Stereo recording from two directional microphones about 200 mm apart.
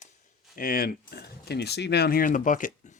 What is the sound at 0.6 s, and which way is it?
Speech, 45° left (ahead or behind).